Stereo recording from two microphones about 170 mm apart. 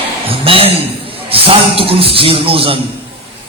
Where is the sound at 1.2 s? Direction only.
35° right (ahead or behind).